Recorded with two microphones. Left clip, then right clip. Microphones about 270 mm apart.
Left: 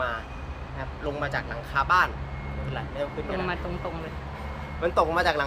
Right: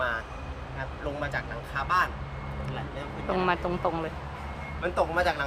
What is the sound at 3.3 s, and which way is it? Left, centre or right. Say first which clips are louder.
Speech: right 3 dB; centre.